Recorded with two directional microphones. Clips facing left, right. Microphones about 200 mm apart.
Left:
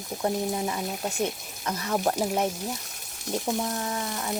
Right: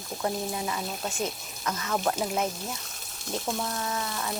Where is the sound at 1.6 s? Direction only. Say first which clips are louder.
Left 2 dB; 30° left (ahead or behind).